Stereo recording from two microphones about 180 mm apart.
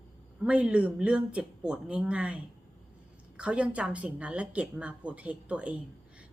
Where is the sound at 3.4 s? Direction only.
5° right (ahead or behind).